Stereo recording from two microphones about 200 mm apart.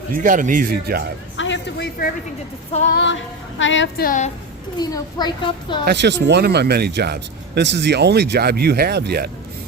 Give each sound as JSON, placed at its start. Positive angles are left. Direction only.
{"t": 0.1, "sound": "speech", "side_deg": -40}
{"t": 1.4, "sound": "a sound", "side_deg": 60}
{"t": 2.9, "sound": "female singing", "side_deg": 65}
{"t": 3.6, "sound": "a woman's voice", "side_deg": 65}
{"t": 4.0, "sound": "a woman's voice", "side_deg": 40}
{"t": 4.8, "sound": "a child's voice", "side_deg": 20}
{"t": 5.8, "sound": "speech", "side_deg": -55}